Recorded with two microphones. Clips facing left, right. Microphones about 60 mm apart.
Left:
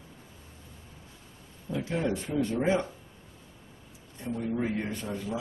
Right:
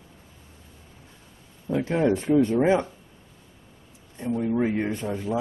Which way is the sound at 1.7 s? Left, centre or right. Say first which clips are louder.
Right 8 dB; right.